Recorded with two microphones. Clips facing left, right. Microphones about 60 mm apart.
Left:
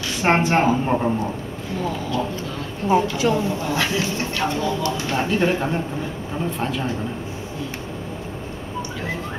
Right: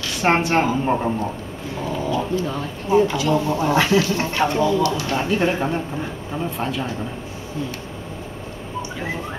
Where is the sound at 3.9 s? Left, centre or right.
Left.